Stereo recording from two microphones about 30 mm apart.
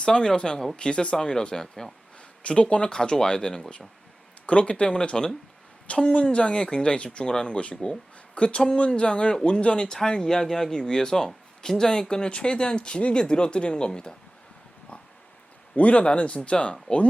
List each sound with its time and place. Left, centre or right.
0.0 s speech: left
2.4 s speech: left
2.9 s speech: left
5.9 s speech: left
6.2 s speech: left
10.2 s speech: centre
12.0 s speech: left
15.7 s speech: left